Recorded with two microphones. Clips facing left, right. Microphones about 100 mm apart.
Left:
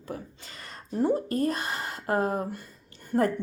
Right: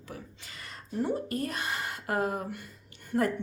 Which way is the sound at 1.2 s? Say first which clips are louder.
Left 5 dB; 35° left (ahead or behind).